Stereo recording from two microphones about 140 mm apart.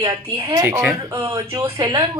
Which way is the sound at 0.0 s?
25° right (ahead or behind).